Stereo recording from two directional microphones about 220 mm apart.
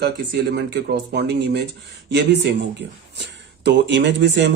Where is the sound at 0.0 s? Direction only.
50° right (ahead or behind).